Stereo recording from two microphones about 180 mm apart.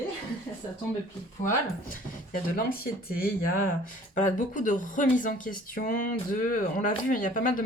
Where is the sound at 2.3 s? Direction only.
55° left (ahead or behind).